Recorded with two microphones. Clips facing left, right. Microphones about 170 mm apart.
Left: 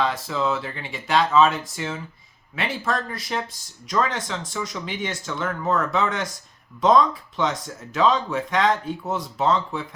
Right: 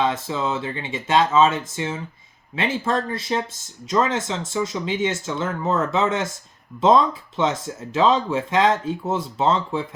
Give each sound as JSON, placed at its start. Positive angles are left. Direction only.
{"t": 0.0, "sound": "speech", "side_deg": -25}